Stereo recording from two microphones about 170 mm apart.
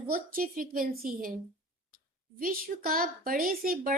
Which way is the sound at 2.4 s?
55° right (ahead or behind).